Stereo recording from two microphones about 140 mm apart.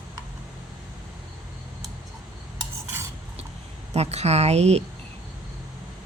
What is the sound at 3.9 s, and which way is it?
Speech, 50° right (ahead or behind).